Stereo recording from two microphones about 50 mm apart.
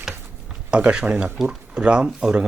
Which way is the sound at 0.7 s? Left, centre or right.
Right.